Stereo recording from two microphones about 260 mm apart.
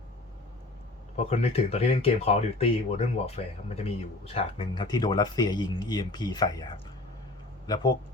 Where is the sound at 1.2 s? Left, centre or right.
Left.